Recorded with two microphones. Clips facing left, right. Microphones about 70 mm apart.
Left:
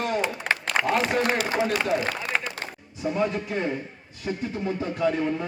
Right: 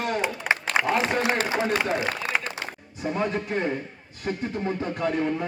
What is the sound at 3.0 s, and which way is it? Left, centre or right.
A man's voice, right.